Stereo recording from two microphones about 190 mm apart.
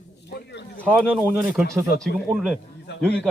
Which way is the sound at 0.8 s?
5° left (ahead or behind).